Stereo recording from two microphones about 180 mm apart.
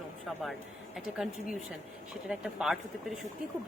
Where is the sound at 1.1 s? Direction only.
5° right (ahead or behind).